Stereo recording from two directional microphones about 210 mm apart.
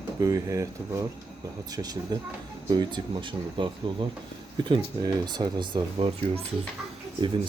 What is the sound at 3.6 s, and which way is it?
Speech, 25° right (ahead or behind).